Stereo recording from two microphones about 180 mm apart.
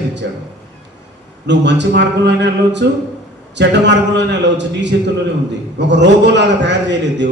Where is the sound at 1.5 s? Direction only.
75° right (ahead or behind).